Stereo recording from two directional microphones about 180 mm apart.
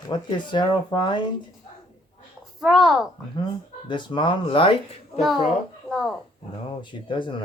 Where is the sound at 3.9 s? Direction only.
25° left (ahead or behind).